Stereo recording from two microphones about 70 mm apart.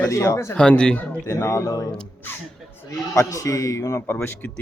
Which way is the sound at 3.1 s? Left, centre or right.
Left.